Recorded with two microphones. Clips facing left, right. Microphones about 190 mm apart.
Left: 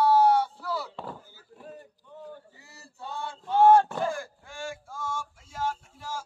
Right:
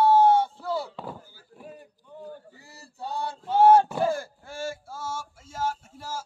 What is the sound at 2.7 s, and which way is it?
Male singing, 35° right (ahead or behind).